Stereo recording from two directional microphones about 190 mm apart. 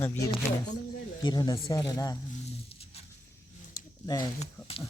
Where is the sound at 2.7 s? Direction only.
30° left (ahead or behind).